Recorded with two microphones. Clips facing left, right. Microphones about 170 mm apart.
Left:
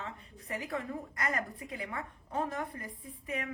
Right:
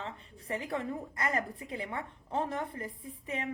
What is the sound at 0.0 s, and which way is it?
A woman's voice, 30° right (ahead or behind).